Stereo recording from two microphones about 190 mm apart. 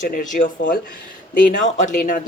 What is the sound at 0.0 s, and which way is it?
Speech, 45° left (ahead or behind).